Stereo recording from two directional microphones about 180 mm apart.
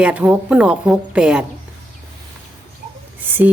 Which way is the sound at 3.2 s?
10° right (ahead or behind).